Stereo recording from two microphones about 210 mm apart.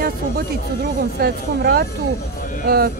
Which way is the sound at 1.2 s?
50° right (ahead or behind).